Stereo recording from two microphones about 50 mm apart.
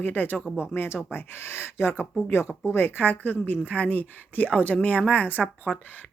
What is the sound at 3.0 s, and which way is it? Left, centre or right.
A woman's voice, left.